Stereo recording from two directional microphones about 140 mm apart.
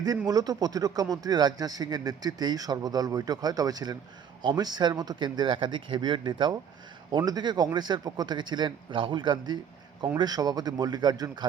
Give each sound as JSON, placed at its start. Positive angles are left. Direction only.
{"t": 0.3, "sound": "a man's voice", "side_deg": -25}